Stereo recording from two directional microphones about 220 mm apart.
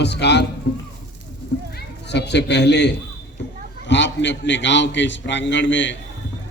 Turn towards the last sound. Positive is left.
turn(degrees=55)  # may be behind; listen again after turning